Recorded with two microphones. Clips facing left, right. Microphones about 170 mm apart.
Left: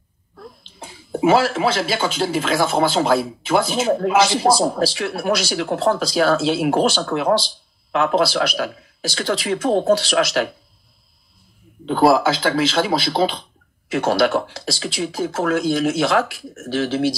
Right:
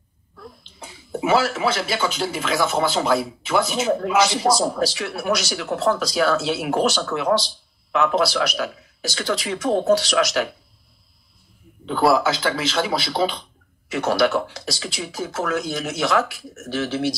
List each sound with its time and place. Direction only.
0.7 s speech: 30° left (ahead or behind)
11.8 s speech: 30° left (ahead or behind)